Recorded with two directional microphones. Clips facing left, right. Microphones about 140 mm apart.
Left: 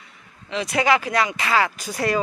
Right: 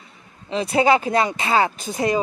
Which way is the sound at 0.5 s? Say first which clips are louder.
Right 3 dB; 30° right (ahead or behind).